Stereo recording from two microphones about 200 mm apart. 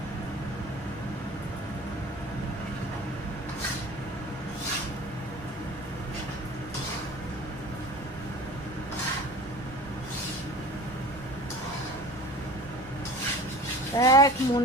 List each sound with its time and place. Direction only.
13.9 s speech: 20° left (ahead or behind)